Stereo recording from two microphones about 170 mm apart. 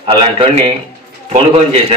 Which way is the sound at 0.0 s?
30° right (ahead or behind).